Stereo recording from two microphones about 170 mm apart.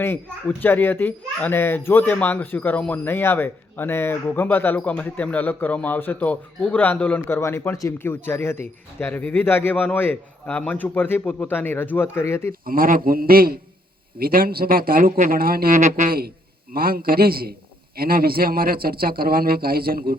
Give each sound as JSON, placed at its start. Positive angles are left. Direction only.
{"t": 0.0, "sound": "speech", "side_deg": 15}
{"t": 12.6, "sound": "a man's voice", "side_deg": -55}